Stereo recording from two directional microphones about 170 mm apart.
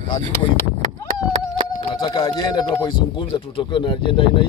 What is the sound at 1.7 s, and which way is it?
Speech, 25° left (ahead or behind).